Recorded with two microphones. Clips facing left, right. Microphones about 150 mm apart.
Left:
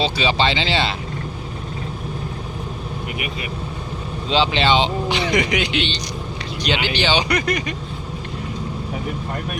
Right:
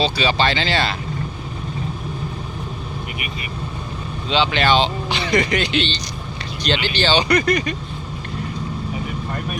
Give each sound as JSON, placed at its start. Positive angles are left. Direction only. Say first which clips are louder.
{"t": 0.0, "sound": "speech", "louder": "even", "side_deg": 20}
{"t": 4.3, "sound": "speech", "louder": "even", "side_deg": 30}